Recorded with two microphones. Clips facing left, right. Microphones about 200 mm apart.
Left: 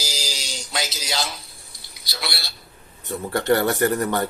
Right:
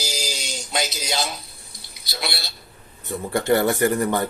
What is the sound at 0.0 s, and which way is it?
Music, 20° right (ahead or behind).